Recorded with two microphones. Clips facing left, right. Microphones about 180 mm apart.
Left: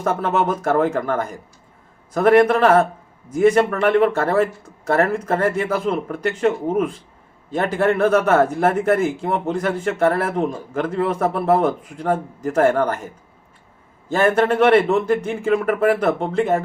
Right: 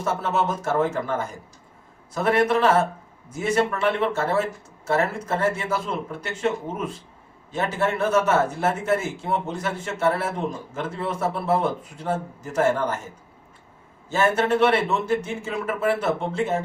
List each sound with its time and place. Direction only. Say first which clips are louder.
0.0 s a man's voice: left 4 dB; 55° left (ahead or behind)
7.5 s a man's voice: left 6 dB; 55° left (ahead or behind)
14.1 s a man's voice: left 4 dB; 55° left (ahead or behind)